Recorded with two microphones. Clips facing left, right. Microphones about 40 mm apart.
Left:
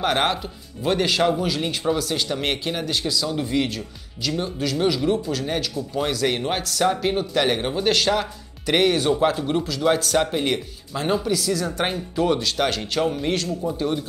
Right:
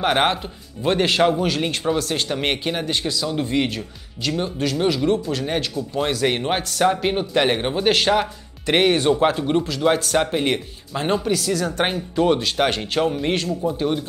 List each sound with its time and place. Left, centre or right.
0.0 s speech: centre
13.0 s speech: centre
13.3 s speech: centre